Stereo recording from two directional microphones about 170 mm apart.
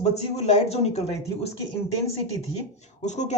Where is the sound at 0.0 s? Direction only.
40° left (ahead or behind).